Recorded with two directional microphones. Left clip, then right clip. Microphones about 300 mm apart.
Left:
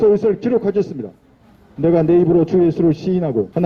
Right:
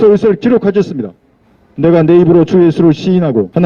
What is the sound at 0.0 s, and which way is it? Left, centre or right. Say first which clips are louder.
A man's voice: right 6 dB; right.